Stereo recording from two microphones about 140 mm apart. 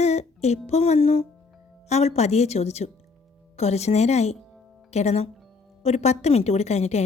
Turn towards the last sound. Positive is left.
turn(degrees=50)  # may be behind; listen again after turning